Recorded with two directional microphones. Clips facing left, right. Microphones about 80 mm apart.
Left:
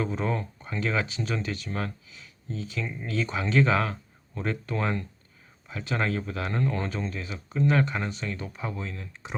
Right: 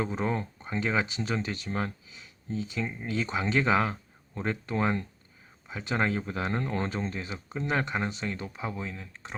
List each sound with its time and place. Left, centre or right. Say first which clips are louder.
0.0 s speech: left 1 dB; centre